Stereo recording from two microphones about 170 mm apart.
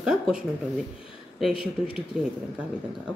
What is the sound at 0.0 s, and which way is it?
Speech, 5° right (ahead or behind).